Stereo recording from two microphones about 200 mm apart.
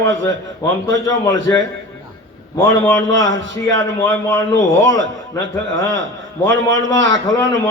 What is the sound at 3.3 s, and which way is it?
Speech, 70° right (ahead or behind).